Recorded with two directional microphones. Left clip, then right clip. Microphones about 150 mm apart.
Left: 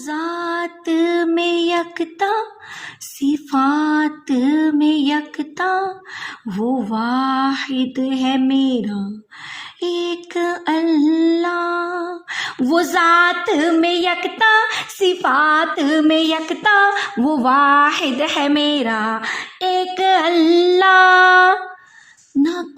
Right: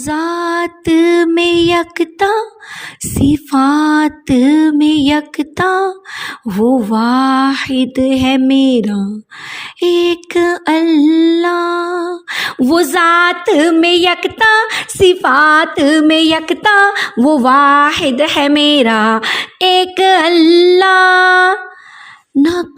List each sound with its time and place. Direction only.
0.0 s mantra: 35° right (ahead or behind); by 21.6 s 20° right (ahead or behind)